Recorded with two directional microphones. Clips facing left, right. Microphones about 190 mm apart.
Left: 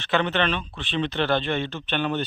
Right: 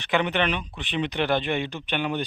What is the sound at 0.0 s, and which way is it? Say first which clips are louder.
Speech: left 1 dB; 15° right (ahead or behind).